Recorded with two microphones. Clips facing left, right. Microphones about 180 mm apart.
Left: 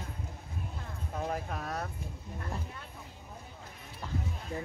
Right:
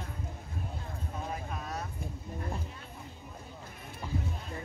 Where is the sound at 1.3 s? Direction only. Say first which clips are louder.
Left 2 dB; 55° left (ahead or behind).